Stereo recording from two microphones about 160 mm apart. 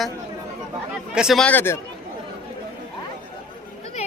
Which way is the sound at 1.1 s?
Centre (ahead or behind).